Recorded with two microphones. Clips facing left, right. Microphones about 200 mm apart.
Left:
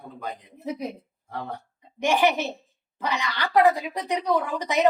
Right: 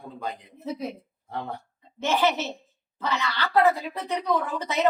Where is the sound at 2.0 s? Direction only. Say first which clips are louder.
Left 2 dB; 15° left (ahead or behind).